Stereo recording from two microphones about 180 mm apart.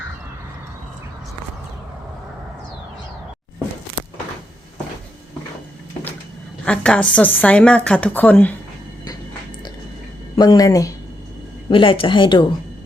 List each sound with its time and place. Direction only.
6.7 s speech: 5° left (ahead or behind)
10.3 s speech: 25° left (ahead or behind)
11.7 s speech: 30° left (ahead or behind)